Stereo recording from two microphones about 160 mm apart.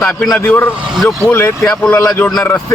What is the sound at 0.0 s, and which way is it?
A man's voice, 5° left (ahead or behind).